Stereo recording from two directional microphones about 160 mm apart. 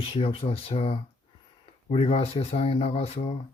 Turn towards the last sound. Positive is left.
turn(degrees=40)  # may be behind; listen again after turning